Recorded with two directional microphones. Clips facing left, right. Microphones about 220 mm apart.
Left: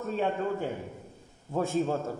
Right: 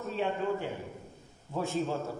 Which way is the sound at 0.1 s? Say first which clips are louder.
Left 2 dB; 45° left (ahead or behind).